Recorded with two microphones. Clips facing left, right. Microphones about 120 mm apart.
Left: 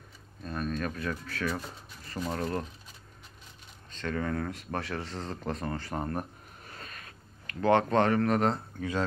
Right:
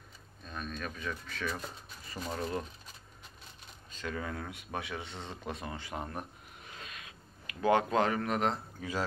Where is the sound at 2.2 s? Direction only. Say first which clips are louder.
Left 6 dB; 35° left (ahead or behind).